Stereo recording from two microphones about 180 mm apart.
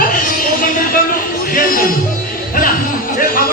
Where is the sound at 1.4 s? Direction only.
50° left (ahead or behind).